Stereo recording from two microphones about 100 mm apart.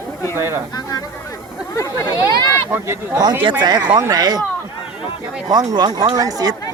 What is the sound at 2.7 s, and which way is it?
Speech, 20° right (ahead or behind).